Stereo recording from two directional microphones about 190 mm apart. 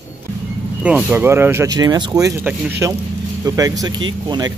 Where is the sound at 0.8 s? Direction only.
10° right (ahead or behind).